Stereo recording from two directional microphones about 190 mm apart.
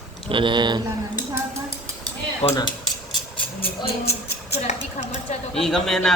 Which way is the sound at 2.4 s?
15° left (ahead or behind).